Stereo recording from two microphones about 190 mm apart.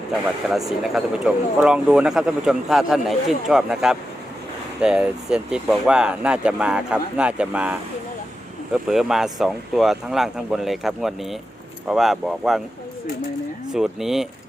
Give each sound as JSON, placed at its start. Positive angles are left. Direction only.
{"t": 0.9, "sound": "speech", "side_deg": -5}
{"t": 13.7, "sound": "speech", "side_deg": 0}